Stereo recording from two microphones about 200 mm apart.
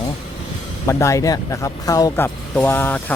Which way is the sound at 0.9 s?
15° left (ahead or behind).